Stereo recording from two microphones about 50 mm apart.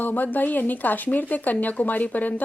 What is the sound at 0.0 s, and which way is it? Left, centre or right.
Speech, left.